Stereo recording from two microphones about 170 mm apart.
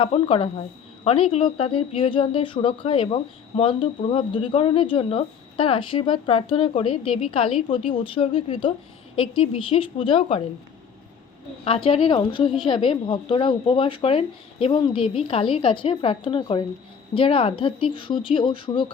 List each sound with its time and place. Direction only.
0.0 s speech: 35° left (ahead or behind)
11.6 s speech: 30° left (ahead or behind)